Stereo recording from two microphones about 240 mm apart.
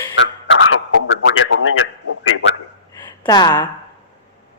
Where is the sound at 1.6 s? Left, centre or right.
Left.